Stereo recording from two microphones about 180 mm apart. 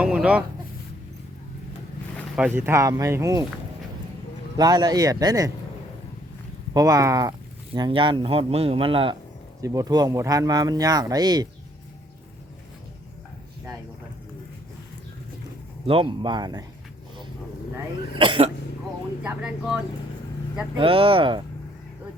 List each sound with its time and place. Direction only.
0.0 s a sound: 5° right (ahead or behind)
2.3 s speech: 10° right (ahead or behind)
4.5 s speech: 20° right (ahead or behind)
6.7 s speech: 20° right (ahead or behind)
9.6 s speech: 20° right (ahead or behind)
15.9 s speech: 30° right (ahead or behind)
18.1 s speech: 30° right (ahead or behind)
19.2 s speech: 10° right (ahead or behind)
20.7 s speech: 30° right (ahead or behind)